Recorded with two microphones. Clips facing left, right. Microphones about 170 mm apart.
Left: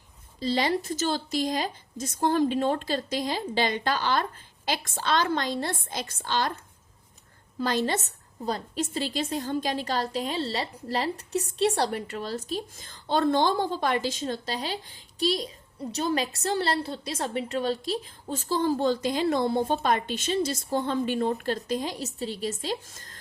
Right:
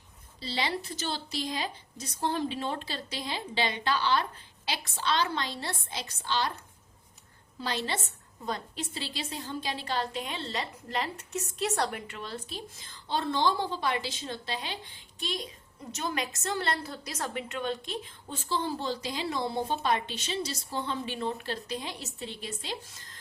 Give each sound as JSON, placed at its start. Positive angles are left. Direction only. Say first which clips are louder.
{"t": 0.3, "sound": "a woman's voice", "louder": "left 7 dB", "side_deg": 45}
{"t": 7.6, "sound": "a woman's voice", "louder": "left 7 dB", "side_deg": 45}